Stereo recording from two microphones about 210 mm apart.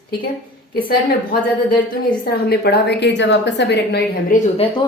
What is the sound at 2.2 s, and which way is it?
A woman's voice, 50° left (ahead or behind).